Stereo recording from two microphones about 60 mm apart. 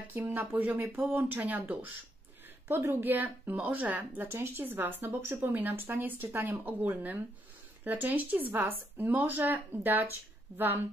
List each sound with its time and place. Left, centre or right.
0.1 s speech: right
2.9 s speech: right
4.3 s speech: right